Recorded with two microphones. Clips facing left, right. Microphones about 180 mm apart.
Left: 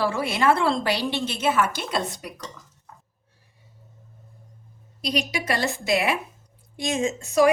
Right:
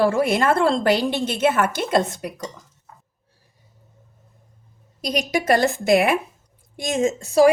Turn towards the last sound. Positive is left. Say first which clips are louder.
# right 4 dB
turn(degrees=-35)  # may be behind; listen again after turning